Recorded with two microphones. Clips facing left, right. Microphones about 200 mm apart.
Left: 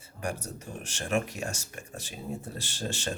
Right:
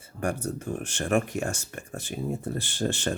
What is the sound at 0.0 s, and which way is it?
Speech, 55° right (ahead or behind).